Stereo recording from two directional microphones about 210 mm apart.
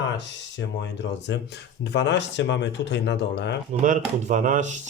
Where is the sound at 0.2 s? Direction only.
60° left (ahead or behind).